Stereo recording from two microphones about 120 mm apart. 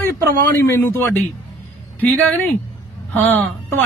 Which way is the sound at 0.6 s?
20° left (ahead or behind).